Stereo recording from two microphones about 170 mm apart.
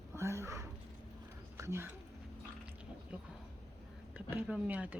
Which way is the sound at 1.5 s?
15° right (ahead or behind).